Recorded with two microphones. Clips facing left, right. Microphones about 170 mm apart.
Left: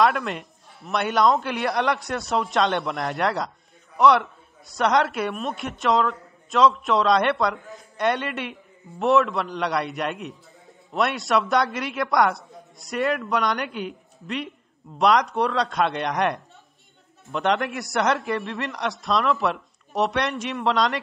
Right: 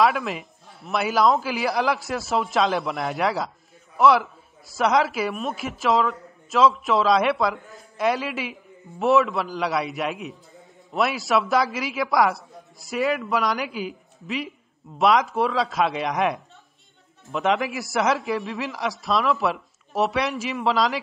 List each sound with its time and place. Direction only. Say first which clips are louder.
0.0 s a man's voice: even; centre (ahead or behind)